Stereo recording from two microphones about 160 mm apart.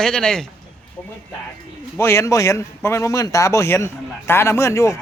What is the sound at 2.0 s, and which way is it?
Speech, 15° left (ahead or behind).